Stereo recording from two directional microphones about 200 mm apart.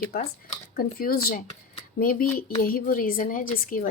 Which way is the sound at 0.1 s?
50° left (ahead or behind).